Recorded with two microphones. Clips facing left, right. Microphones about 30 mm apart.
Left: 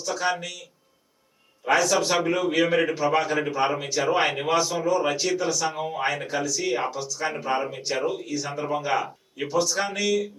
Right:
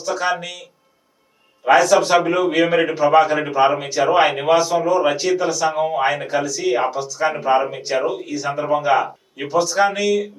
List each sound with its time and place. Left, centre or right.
0.0 s speech: centre
5.8 s speech: centre
6.1 s speech: centre
9.0 s a sound: centre
9.5 s speech: centre